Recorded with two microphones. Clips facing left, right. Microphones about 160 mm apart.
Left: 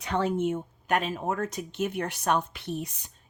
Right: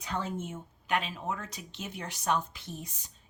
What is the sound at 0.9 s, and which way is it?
Speech, 45° left (ahead or behind).